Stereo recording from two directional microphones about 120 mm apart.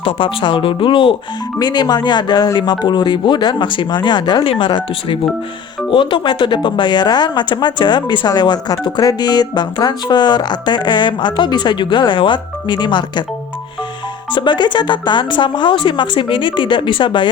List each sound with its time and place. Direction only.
0.0 s speech: 45° left (ahead or behind)
14.3 s speech: 40° left (ahead or behind)